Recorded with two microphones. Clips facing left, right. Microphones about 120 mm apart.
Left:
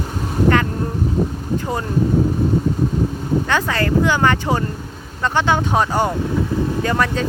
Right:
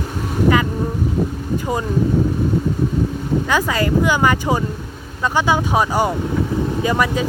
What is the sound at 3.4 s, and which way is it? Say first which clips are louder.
Speech: right 1 dB; 10° right (ahead or behind).